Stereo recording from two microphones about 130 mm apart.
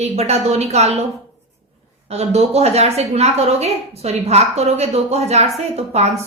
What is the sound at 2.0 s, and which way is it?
A woman's voice, 55° right (ahead or behind).